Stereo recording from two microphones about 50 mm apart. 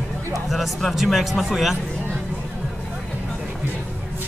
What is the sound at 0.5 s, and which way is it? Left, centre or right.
A man's voice, centre.